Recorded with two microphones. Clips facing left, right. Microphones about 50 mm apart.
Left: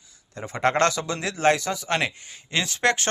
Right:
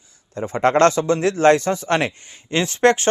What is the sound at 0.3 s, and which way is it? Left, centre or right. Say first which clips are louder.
Speech: right 6 dB; right.